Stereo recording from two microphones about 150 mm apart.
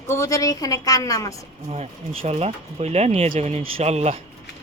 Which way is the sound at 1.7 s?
45° right (ahead or behind).